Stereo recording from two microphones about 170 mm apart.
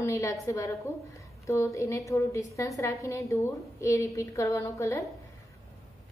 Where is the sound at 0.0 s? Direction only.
20° left (ahead or behind).